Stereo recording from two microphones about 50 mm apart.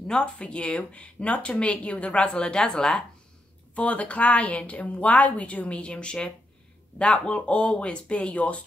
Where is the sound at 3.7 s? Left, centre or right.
Left.